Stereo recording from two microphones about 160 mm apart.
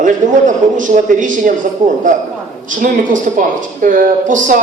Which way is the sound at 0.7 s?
55° right (ahead or behind).